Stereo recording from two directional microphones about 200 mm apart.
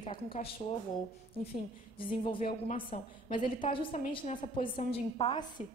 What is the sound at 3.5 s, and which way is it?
Speech, 25° left (ahead or behind).